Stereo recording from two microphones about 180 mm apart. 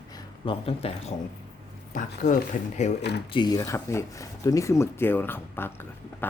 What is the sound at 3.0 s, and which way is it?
Speech, 70° left (ahead or behind).